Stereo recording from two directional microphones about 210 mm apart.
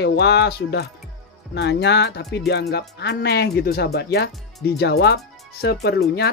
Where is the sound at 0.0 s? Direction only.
55° left (ahead or behind).